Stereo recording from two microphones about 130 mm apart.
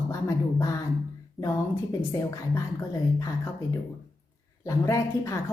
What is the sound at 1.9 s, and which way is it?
Speech, 20° left (ahead or behind).